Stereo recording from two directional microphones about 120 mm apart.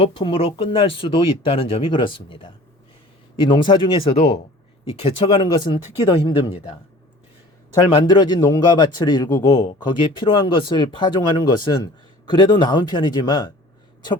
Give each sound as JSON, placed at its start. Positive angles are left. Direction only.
{"t": 0.0, "sound": "speech", "side_deg": 50}
{"t": 7.8, "sound": "speech", "side_deg": 35}
{"t": 10.0, "sound": "speech", "side_deg": 45}